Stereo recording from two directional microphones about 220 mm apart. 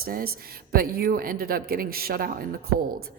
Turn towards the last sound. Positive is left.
turn(degrees=-40)  # may be behind; listen again after turning